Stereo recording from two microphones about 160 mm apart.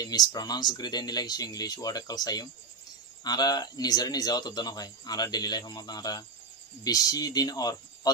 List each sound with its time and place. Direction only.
0.0 s a man's voice: 25° left (ahead or behind)